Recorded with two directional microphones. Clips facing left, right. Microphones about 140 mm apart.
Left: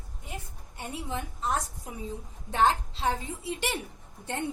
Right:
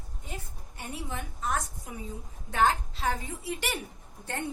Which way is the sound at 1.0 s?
30° left (ahead or behind).